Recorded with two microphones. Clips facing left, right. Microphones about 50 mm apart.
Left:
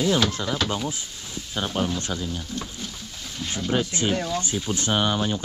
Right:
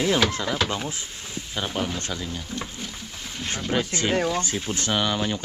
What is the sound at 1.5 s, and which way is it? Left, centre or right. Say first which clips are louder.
Speech: left 2 dB; centre.